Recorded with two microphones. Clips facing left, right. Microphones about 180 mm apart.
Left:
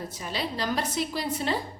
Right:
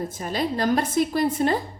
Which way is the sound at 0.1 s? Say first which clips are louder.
Right 6 dB; 50° right (ahead or behind).